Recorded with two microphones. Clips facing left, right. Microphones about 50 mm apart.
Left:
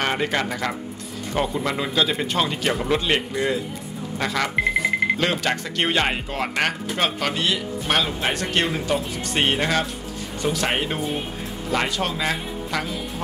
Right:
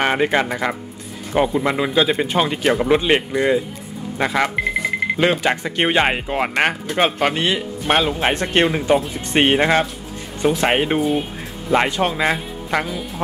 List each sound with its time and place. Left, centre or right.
0.0 s speech: centre
4.6 s alarm clock: centre
5.1 s speech: centre
11.0 s speech: centre
11.7 s speech: right